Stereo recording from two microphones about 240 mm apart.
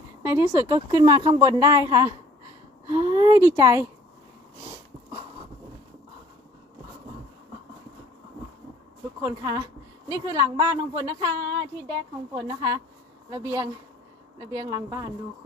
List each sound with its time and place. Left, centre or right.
0.2 s a woman's voice: centre
9.2 s a woman's voice: centre